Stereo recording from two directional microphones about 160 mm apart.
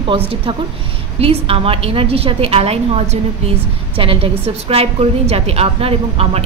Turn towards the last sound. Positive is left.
turn(degrees=-40)  # may be behind; listen again after turning